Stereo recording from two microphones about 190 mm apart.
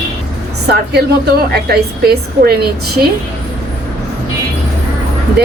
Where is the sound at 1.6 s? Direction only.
55° right (ahead or behind).